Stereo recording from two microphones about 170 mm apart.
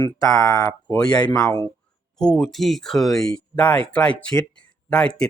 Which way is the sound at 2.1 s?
5° left (ahead or behind).